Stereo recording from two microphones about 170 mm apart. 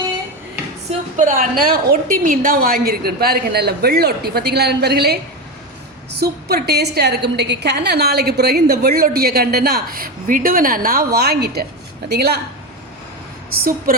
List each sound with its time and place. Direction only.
0.9 s a woman's voice: 50° right (ahead or behind); by 5.1 s 70° right (ahead or behind)
6.1 s a woman's voice: 70° right (ahead or behind)
13.9 s speech: 55° right (ahead or behind)